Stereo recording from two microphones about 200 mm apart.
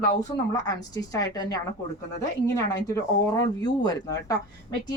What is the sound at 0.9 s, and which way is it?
Speech, 20° left (ahead or behind).